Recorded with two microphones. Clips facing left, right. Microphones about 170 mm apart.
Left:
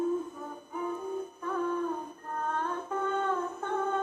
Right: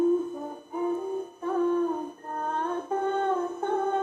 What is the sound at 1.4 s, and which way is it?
Humming, 25° right (ahead or behind).